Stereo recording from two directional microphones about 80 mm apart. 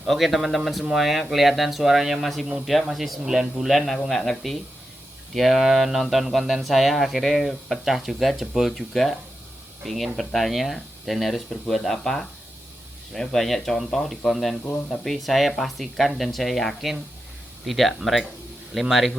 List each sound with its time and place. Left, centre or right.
0.1 s speech: centre
14.6 s speech: left
15.0 s speech: centre